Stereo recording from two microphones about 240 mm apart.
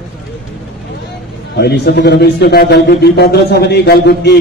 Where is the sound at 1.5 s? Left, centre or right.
Left.